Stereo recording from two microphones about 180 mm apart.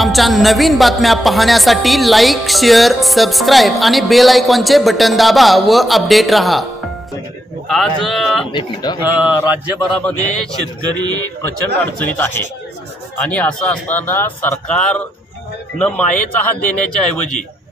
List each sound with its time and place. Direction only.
0.0 s speech: centre (ahead or behind)
8.5 s speech: 25° left (ahead or behind)
9.0 s mantra: 10° right (ahead or behind)
9.9 s speech: 5° left (ahead or behind)
12.0 s a man's voice: 10° left (ahead or behind)
16.4 s a man's voice: 5° left (ahead or behind)